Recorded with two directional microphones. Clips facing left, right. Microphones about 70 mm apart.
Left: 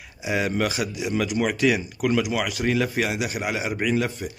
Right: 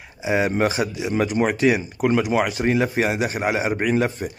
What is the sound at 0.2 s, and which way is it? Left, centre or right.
Speech, right.